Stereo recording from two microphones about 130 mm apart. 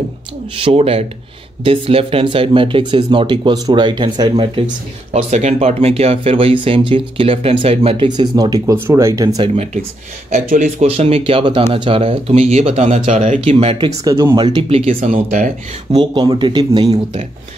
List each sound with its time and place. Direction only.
0.6 s speech: 45° right (ahead or behind)
5.1 s speech: 60° right (ahead or behind)
8.1 s speech: 35° right (ahead or behind)
9.5 s speech: 55° right (ahead or behind)
10.3 s speech: 65° right (ahead or behind)
13.5 s speech: 45° right (ahead or behind)
14.0 s speech: 20° right (ahead or behind)
14.3 s speech: 35° right (ahead or behind)
15.9 s speech: 35° right (ahead or behind); by 17.3 s 55° right (ahead or behind)